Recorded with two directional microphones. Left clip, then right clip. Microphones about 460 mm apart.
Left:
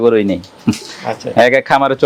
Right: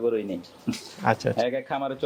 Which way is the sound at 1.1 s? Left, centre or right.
Right.